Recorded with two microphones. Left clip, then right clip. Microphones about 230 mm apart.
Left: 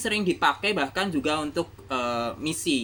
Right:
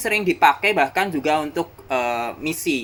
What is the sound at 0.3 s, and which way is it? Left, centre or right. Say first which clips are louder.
Speech: right 10 dB; centre.